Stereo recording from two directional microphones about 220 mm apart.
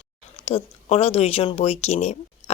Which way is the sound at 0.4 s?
30° left (ahead or behind).